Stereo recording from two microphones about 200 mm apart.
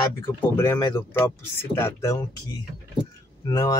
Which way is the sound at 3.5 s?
20° left (ahead or behind).